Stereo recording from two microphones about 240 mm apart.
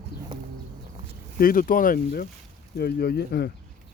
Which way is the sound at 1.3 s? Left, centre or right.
Left.